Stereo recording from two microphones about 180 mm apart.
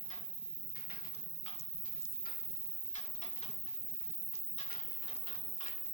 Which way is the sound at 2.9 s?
40° left (ahead or behind).